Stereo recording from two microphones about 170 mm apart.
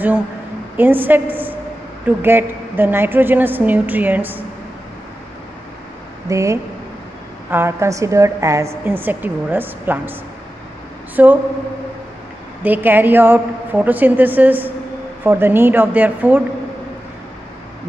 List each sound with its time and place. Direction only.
0.7 s a woman's voice: 10° right (ahead or behind)
6.2 s a woman's voice: 20° right (ahead or behind)
11.2 s a woman's voice: 10° right (ahead or behind)
12.6 s a woman's voice: 10° right (ahead or behind)